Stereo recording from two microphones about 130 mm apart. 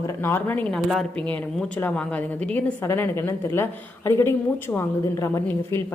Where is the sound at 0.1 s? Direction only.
20° left (ahead or behind).